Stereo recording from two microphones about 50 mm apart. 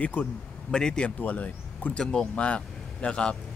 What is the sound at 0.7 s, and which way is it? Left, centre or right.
Speech, centre.